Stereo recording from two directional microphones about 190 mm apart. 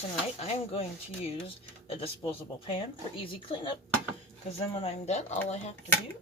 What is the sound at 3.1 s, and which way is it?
Speech, 30° left (ahead or behind).